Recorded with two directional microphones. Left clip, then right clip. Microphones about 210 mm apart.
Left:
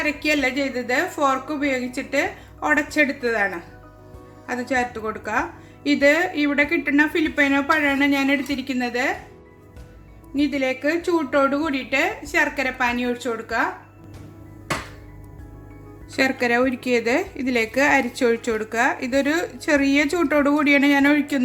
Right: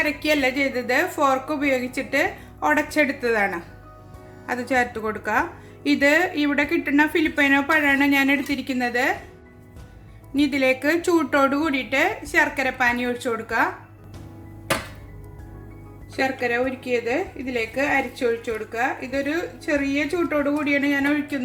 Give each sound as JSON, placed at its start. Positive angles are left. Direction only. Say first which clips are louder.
{"t": 0.0, "sound": "a woman's voice", "louder": "even", "side_deg": 0}
{"t": 10.3, "sound": "a woman's voice", "louder": "right 2 dB", "side_deg": -10}
{"t": 16.1, "sound": "a woman's voice", "louder": "left 3 dB", "side_deg": 30}